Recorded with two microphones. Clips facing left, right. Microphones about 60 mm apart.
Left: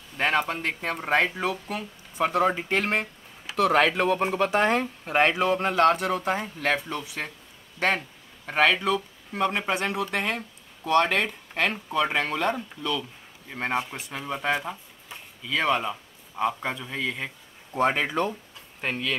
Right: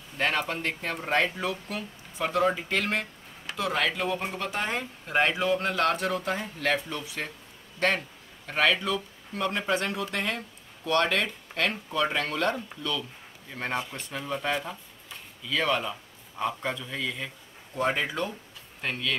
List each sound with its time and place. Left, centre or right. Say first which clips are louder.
0.2 s speech: left 3 dB; centre
3.5 s speech: left 7 dB; left
4.1 s speech: left 7 dB; left
4.4 s speech: left 8 dB; left
5.6 s speech: left 5 dB; left
7.0 s speech: left 1 dB; centre
8.5 s speech: left 3 dB; centre
17.7 s speech: left 4 dB; left
18.8 s speech: left 2 dB; left